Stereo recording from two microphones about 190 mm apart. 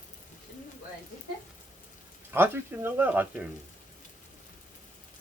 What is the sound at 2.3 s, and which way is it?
Speech, 10° right (ahead or behind).